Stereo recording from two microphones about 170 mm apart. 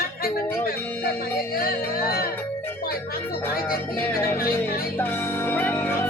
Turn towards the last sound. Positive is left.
turn(degrees=15)  # may be behind; listen again after turning